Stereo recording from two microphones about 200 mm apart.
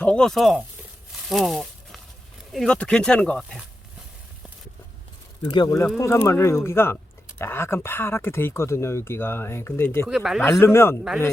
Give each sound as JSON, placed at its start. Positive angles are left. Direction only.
{"t": 0.0, "sound": "speech", "side_deg": 5}
{"t": 1.1, "sound": "a sound", "side_deg": 0}
{"t": 2.5, "sound": "speech", "side_deg": 5}
{"t": 5.5, "sound": "speech", "side_deg": 20}
{"t": 10.1, "sound": "speech", "side_deg": 0}
{"t": 10.4, "sound": "speech", "side_deg": 10}